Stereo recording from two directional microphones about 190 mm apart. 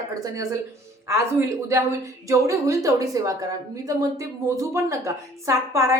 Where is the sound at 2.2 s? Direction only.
15° right (ahead or behind).